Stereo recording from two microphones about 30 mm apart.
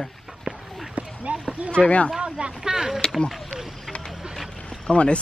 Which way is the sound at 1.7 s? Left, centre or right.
Left.